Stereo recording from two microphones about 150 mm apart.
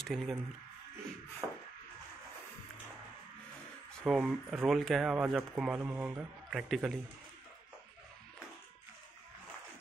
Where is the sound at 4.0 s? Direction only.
Centre (ahead or behind).